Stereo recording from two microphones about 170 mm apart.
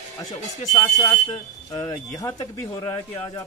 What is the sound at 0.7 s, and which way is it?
Speech, 25° left (ahead or behind).